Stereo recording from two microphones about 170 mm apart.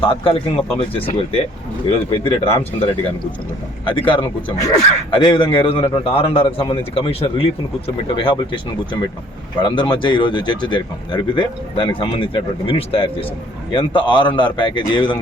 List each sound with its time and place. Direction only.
0.0 s a man's voice: 30° left (ahead or behind)
9.6 s speech: 30° left (ahead or behind)